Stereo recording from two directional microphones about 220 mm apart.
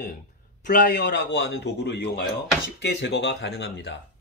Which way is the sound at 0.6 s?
35° left (ahead or behind).